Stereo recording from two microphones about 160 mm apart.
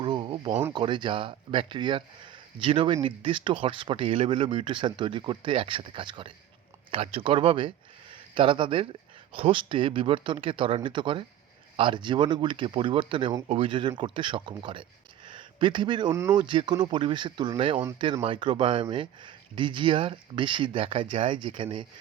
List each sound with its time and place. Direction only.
0.0 s a sound: 30° right (ahead or behind)
0.7 s speech: 30° right (ahead or behind)
16.1 s speech: 15° right (ahead or behind)
16.4 s speech: 30° right (ahead or behind)